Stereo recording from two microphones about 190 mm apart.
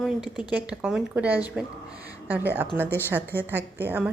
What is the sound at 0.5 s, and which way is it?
Speech, 5° right (ahead or behind).